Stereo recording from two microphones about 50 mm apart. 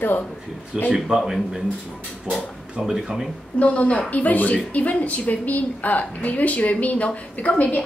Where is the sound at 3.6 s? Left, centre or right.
Left.